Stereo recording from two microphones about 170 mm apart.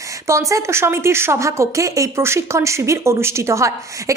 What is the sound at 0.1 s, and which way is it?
A woman's voice, 15° right (ahead or behind).